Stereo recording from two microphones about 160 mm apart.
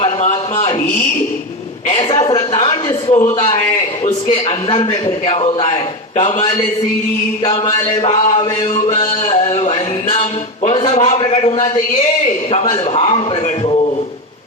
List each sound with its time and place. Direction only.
0.0 s a sound: 40° left (ahead or behind)
2.0 s a woman's voice: 25° left (ahead or behind)
4.3 s a man's voice: 40° left (ahead or behind)
5.0 s a woman's voice: 30° left (ahead or behind)
8.0 s a woman's voice: 40° left (ahead or behind)
8.7 s a sound: 50° left (ahead or behind)
10.6 s a woman's voice: 45° left (ahead or behind)